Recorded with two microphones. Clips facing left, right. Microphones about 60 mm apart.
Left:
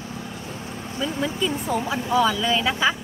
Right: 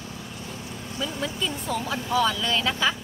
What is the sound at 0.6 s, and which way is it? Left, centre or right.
Vehicle, left.